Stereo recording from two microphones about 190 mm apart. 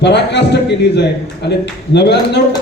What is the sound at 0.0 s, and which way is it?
A man's voice, 65° left (ahead or behind).